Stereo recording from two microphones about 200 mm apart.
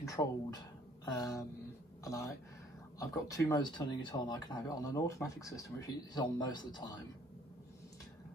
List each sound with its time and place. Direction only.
0.0 s speech: 15° left (ahead or behind)
3.0 s speech: 15° left (ahead or behind)